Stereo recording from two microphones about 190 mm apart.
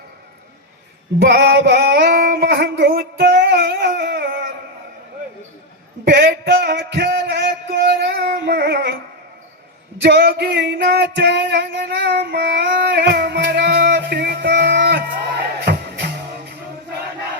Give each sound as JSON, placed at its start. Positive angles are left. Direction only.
{"t": 1.2, "sound": "music", "side_deg": -60}
{"t": 6.1, "sound": "a sound", "side_deg": -55}
{"t": 10.0, "sound": "music", "side_deg": -60}